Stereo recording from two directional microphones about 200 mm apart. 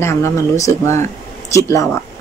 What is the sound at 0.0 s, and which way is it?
Speech, 15° left (ahead or behind).